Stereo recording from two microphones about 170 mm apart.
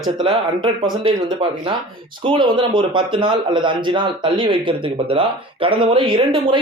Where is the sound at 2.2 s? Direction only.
30° right (ahead or behind).